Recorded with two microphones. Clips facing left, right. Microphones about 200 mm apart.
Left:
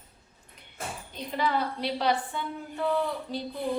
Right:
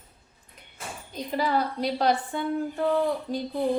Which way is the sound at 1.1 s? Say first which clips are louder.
Right 3 dB; 40° right (ahead or behind).